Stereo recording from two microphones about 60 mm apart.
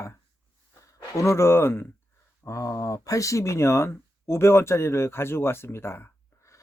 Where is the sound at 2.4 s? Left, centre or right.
Left.